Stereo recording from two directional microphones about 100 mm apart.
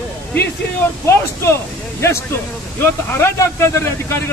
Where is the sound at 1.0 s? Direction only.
25° left (ahead or behind).